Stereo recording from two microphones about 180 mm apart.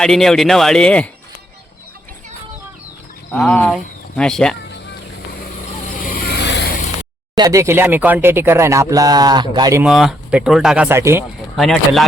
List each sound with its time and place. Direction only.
0.0 s speech: centre (ahead or behind)
3.3 s speech: 5° left (ahead or behind)
4.6 s a sound: 70° left (ahead or behind)
6.0 s vehicle: 50° left (ahead or behind)
6.4 s vehicle: 75° left (ahead or behind)
7.3 s speech: 20° right (ahead or behind)
9.8 s speech: centre (ahead or behind)
11.5 s speech: centre (ahead or behind)